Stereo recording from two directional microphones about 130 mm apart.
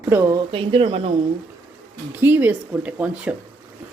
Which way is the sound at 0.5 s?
45° right (ahead or behind).